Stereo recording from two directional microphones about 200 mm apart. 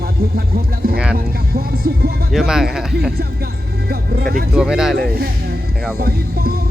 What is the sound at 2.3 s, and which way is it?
Speech, 5° right (ahead or behind).